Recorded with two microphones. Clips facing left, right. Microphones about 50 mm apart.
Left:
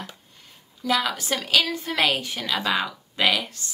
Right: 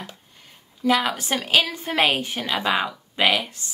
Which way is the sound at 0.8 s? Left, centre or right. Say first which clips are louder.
Right 3 dB; right.